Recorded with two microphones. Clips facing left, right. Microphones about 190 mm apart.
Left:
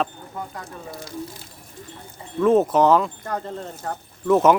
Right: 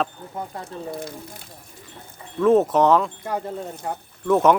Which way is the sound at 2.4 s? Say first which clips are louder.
Even; centre (ahead or behind).